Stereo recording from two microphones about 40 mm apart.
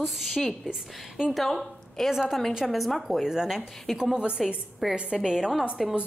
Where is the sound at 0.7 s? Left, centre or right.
Right.